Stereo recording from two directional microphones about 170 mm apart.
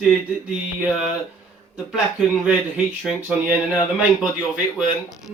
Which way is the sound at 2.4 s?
5° right (ahead or behind).